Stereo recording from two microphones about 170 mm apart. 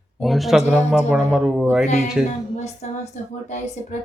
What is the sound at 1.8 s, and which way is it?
A woman's voice, 40° left (ahead or behind).